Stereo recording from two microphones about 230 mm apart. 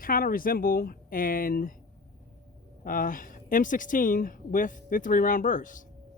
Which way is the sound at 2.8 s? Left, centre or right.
Left.